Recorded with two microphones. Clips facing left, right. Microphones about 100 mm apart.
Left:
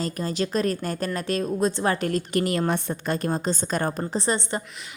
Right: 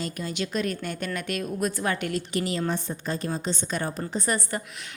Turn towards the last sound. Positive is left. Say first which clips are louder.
# left 2 dB
turn(degrees=25)  # may be behind; listen again after turning